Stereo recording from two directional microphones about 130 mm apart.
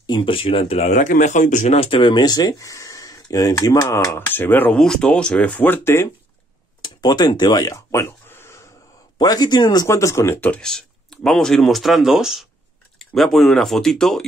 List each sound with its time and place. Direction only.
0.0 s speech: 35° left (ahead or behind); by 1.8 s 70° left (ahead or behind)
1.8 s speech: 45° left (ahead or behind); by 6.0 s 15° left (ahead or behind)
6.8 s a sound: 35° left (ahead or behind)
9.2 s speech: 30° left (ahead or behind); by 14.2 s 5° left (ahead or behind)